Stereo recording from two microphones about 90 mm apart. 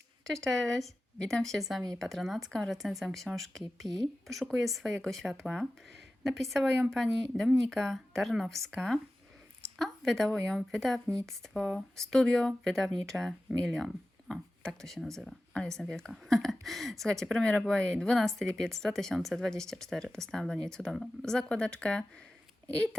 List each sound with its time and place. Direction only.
0.3 s speech: 5° left (ahead or behind)